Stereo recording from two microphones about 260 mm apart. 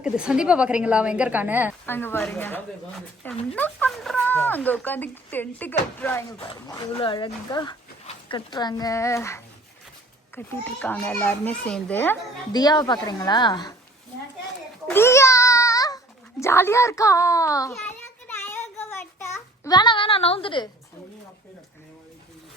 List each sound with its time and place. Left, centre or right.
0.0 s a woman's voice: centre
1.9 s speech: centre
6.5 s speech: centre
14.8 s babbling: centre
16.4 s a sound: centre